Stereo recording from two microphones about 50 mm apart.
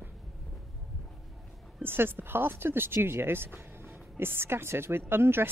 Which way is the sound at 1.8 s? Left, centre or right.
Right.